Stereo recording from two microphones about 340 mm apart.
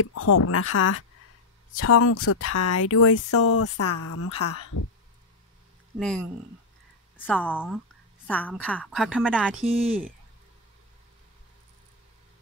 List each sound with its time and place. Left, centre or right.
0.0 s speech: left
5.9 s a woman's voice: centre
7.2 s a woman's voice: centre
9.6 s speech: centre